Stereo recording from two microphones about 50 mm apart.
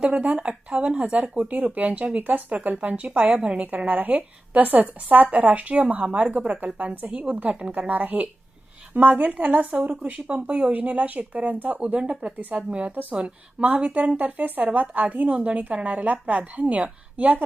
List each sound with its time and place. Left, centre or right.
0.1 s speech: right
3.7 s speech: right
12.2 s speech: right
12.5 s speech: right